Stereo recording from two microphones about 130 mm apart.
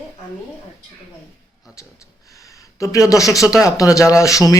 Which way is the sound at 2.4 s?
25° left (ahead or behind).